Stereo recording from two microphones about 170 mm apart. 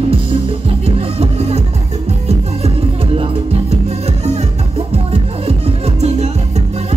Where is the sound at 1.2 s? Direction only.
40° right (ahead or behind).